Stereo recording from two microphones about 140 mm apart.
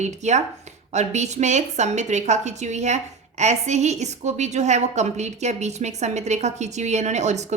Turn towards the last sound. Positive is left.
turn(degrees=-55)  # may be behind; listen again after turning